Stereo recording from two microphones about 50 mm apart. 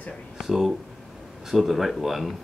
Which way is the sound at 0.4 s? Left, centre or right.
Centre.